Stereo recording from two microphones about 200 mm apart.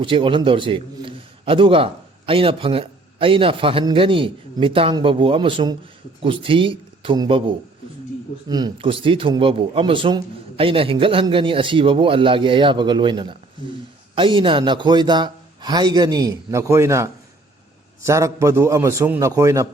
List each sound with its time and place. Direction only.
0.0 s a man's voice: 25° right (ahead or behind)